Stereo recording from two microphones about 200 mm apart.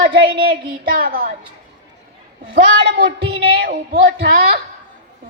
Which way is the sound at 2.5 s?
55° right (ahead or behind).